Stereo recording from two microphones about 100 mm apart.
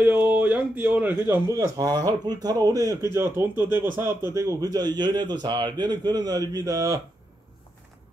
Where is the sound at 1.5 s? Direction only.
35° right (ahead or behind).